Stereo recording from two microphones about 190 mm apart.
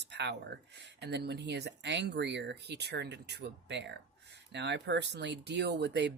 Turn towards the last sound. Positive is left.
turn(degrees=-65)  # may be behind; listen again after turning